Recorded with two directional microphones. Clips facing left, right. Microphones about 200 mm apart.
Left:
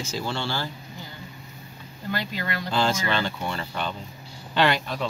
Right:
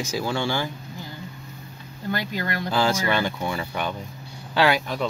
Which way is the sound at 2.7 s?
10° right (ahead or behind).